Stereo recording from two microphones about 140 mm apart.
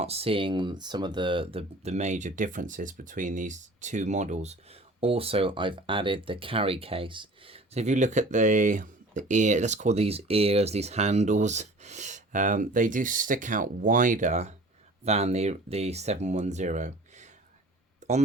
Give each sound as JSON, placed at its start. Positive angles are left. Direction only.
{"t": 0.0, "sound": "speech", "side_deg": -45}
{"t": 4.9, "sound": "speech", "side_deg": -45}